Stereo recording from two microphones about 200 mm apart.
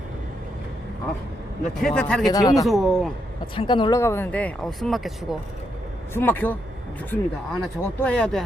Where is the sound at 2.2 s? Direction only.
20° left (ahead or behind).